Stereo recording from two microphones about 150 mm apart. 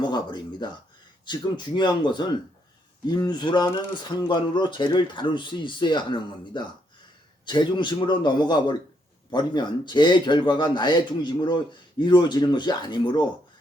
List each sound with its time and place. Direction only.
0.0 s a man's voice: 30° left (ahead or behind)